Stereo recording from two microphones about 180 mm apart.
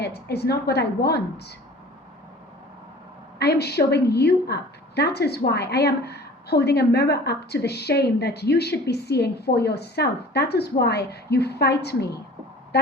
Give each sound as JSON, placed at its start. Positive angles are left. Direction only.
{"t": 0.0, "sound": "a woman's voice", "side_deg": 65}
{"t": 3.3, "sound": "a woman's voice", "side_deg": 65}